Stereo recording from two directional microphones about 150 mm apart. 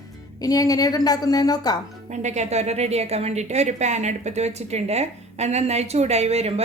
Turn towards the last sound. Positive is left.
turn(degrees=-45)  # may be behind; listen again after turning